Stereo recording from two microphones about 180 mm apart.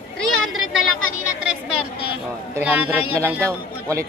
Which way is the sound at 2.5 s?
10° right (ahead or behind).